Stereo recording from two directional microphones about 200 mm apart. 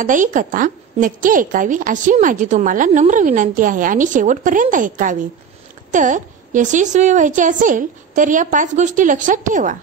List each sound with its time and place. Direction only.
0.0 s a woman's voice: 40° right (ahead or behind)